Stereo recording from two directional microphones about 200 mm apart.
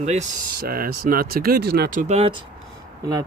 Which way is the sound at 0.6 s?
45° right (ahead or behind).